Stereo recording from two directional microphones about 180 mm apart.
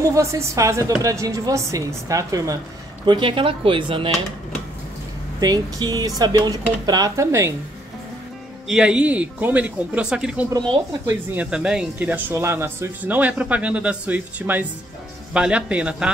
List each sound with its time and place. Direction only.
0.0 s speech: 15° right (ahead or behind)
5.4 s speech: 20° right (ahead or behind)
8.6 s speech: 5° right (ahead or behind)
10.7 s speech: 15° right (ahead or behind)